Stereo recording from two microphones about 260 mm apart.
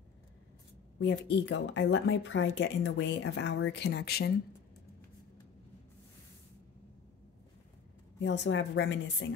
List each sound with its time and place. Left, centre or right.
0.9 s speech: left
8.2 s speech: left